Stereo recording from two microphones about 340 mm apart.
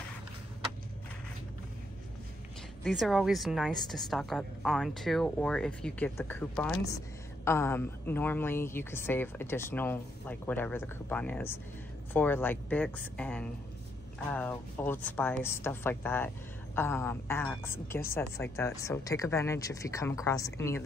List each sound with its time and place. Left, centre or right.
2.8 s a woman's voice: centre